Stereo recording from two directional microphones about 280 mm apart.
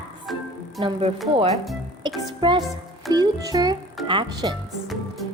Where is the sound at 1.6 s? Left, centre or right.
Centre.